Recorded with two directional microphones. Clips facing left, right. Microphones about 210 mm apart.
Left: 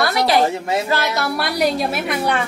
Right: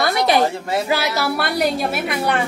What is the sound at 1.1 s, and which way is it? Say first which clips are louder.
A woman's voice: right 1 dB; centre (ahead or behind).